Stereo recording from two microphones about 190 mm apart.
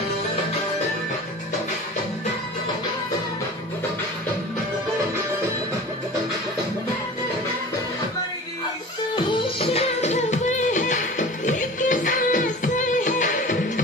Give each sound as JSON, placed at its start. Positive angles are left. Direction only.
{"t": 9.1, "sound": "music", "side_deg": 30}